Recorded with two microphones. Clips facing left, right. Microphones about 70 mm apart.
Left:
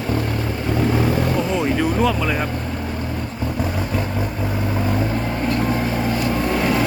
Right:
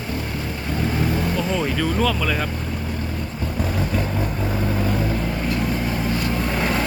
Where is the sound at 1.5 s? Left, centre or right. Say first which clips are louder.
Left 3 dB; centre.